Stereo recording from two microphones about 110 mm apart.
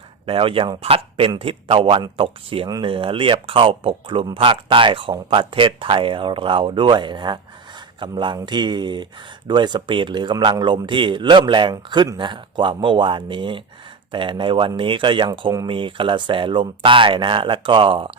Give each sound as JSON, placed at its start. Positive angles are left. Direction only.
{"t": 0.3, "sound": "speech", "side_deg": -55}